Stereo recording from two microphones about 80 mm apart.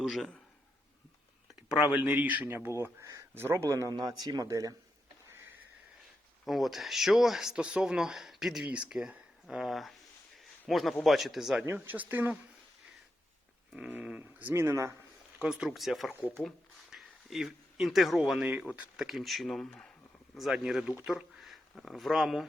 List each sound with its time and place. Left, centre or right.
0.0 s a man's voice: centre
1.9 s speech: centre
2.8 s a sound: right
3.3 s speech: right
3.8 s speech: right
6.4 s speech: centre
11.6 s speech: right
13.7 s speech: centre; by 14.9 s right
15.4 s speech: centre